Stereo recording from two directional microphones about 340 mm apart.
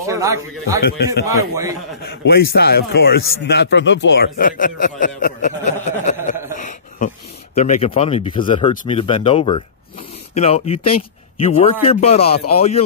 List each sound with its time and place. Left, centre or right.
0.0 s a man's voice: centre
0.8 s speech: left
1.2 s a man's voice: centre
2.2 s a man's voice: left